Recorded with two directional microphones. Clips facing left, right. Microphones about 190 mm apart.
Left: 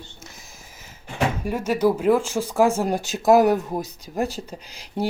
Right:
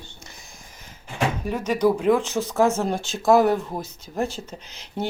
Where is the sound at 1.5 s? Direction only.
10° left (ahead or behind).